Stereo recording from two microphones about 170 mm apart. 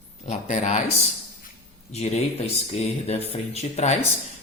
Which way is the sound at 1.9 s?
35° left (ahead or behind).